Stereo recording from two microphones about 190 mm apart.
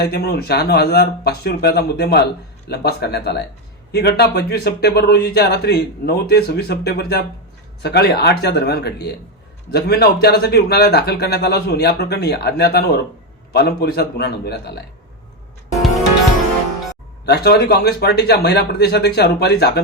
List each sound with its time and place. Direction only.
0.0 s a man's voice: 55° left (ahead or behind)
17.2 s a man's voice: 55° left (ahead or behind)